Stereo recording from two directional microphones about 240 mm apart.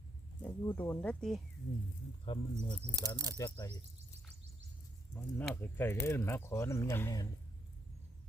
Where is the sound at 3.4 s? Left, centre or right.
Centre.